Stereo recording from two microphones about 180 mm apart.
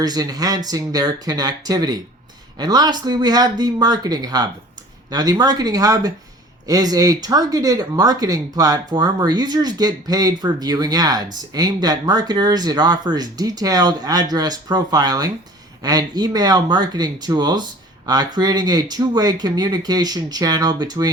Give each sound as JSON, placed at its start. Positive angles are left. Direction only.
{"t": 0.0, "sound": "speech", "side_deg": -20}